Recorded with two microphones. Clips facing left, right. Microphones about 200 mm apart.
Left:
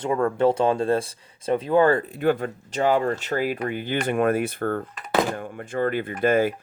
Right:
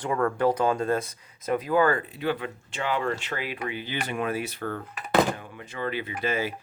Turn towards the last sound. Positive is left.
turn(degrees=50)  # may be behind; listen again after turning